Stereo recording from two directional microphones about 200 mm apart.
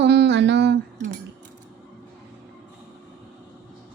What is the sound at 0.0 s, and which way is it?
Humming, 55° right (ahead or behind).